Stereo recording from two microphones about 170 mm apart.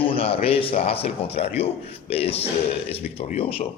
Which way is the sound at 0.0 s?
35° left (ahead or behind).